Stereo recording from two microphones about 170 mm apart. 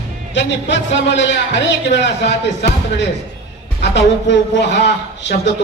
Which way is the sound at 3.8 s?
90° left.